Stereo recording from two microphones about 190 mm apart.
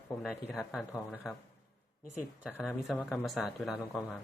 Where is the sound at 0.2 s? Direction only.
5° right (ahead or behind).